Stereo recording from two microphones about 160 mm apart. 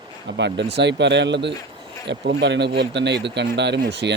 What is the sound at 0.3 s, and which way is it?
Speech, 90° right.